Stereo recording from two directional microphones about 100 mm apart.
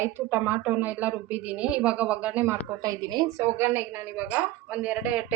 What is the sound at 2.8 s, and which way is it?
Speech, 40° right (ahead or behind).